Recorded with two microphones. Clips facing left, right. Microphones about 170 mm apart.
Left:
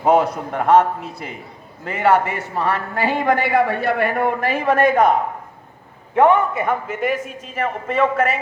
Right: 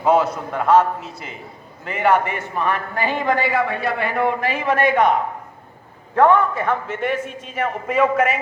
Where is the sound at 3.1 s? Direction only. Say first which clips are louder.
Left 2 dB; 50° left (ahead or behind).